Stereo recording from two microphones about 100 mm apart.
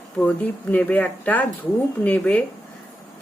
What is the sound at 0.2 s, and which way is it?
Speech, 15° left (ahead or behind).